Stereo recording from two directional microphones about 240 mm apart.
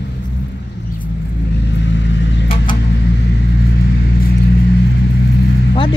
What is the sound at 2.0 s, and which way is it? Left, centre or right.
Vehicle, left.